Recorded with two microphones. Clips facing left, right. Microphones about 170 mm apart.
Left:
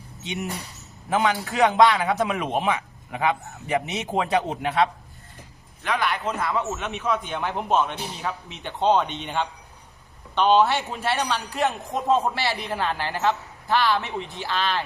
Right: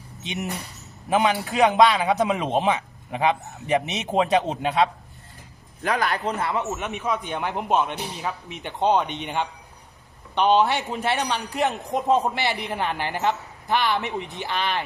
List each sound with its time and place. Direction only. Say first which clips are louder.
0.2 s a man's voice: even; 20° right (ahead or behind)
5.8 s a man's voice: right 1 dB; 40° right (ahead or behind)
6.5 s a man's voice: even; 15° right (ahead or behind)